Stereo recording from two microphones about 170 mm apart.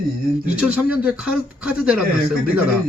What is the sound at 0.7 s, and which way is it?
A man's voice, 5° right (ahead or behind).